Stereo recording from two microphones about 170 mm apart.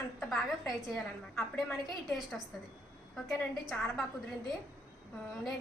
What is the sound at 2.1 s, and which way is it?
A woman's voice, centre (ahead or behind).